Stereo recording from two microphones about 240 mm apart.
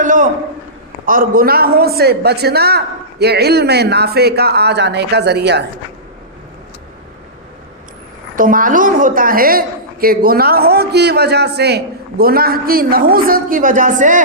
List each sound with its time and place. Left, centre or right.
0.0 s a sound: right
1.0 s a man's voice: right
8.4 s a woman's voice: right